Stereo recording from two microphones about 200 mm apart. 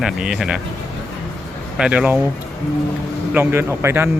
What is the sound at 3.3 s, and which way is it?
Speech, 10° right (ahead or behind).